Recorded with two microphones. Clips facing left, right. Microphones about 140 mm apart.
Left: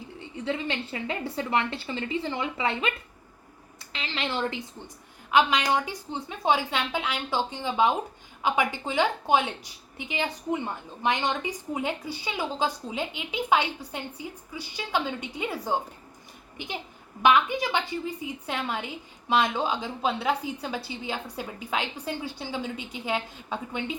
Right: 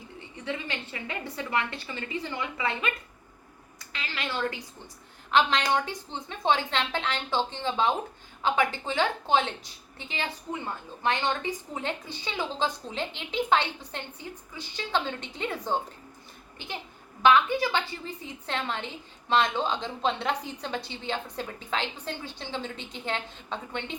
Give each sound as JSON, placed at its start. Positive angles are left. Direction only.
{"t": 0.4, "sound": "a woman's voice", "side_deg": 30}
{"t": 3.9, "sound": "speech", "side_deg": 25}
{"t": 5.3, "sound": "a woman's voice", "side_deg": 10}
{"t": 17.2, "sound": "a woman's voice", "side_deg": 15}